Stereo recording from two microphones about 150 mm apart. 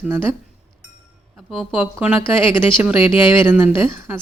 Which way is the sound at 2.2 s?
35° left (ahead or behind).